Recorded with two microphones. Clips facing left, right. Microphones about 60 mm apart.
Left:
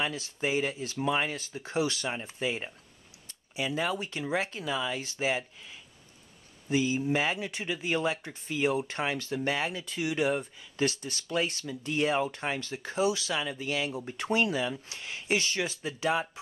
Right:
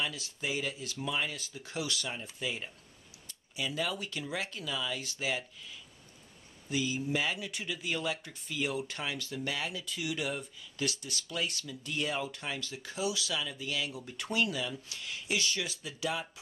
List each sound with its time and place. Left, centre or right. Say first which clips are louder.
0.0 s speech: left 5 dB; left
6.7 s speech: left 5 dB; left